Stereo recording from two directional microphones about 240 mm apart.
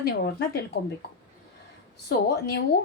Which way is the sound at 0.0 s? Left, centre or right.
Left.